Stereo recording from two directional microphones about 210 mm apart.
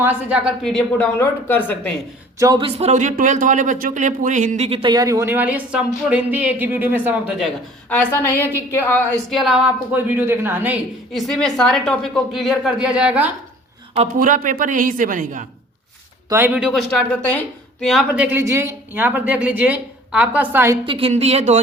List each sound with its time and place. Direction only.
0.0 s a woman's voice: 5° right (ahead or behind); by 1.9 s 10° left (ahead or behind)
2.4 s speech: 20° right (ahead or behind); by 9.0 s 10° left (ahead or behind)
9.3 s a woman's voice: centre (ahead or behind)
13.9 s a woman's voice: 35° right (ahead or behind)
16.3 s speech: 10° right (ahead or behind)
20.8 s speech: 25° right (ahead or behind)